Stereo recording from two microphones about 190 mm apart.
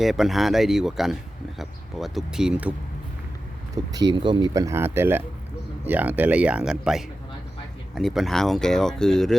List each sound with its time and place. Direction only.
0.0 s speech: centre (ahead or behind)
3.9 s speech: 25° right (ahead or behind); by 9.3 s centre (ahead or behind)